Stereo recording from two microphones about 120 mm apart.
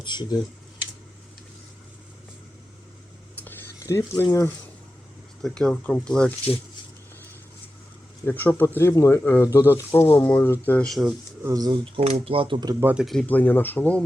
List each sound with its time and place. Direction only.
0.0 s speech: 40° left (ahead or behind)
3.3 s a sound: 15° left (ahead or behind)
5.4 s speech: 5° left (ahead or behind)
8.2 s speech: 15° left (ahead or behind)
10.8 s speech: centre (ahead or behind)
11.4 s speech: 30° right (ahead or behind)
11.9 s speech: 60° right (ahead or behind); by 12.6 s 45° right (ahead or behind)
12.8 s speech: 10° right (ahead or behind)
13.2 s speech: 15° left (ahead or behind)